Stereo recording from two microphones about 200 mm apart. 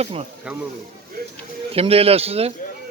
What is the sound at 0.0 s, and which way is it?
Speech, 30° right (ahead or behind).